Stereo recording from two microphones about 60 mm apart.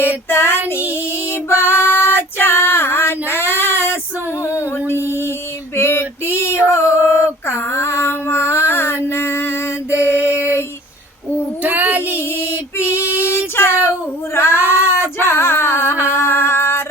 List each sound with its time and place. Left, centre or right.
0.0 s child singing: left
1.6 s female singing: left
4.4 s music: left
5.0 s a sound: left
5.7 s male singing: left
7.7 s mantra: left
11.6 s female singing: right
12.7 s female singing: left
14.3 s child singing: left
14.7 s a sound: left